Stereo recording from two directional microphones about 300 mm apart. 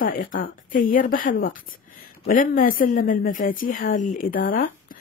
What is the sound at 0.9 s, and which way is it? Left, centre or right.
Speech, left.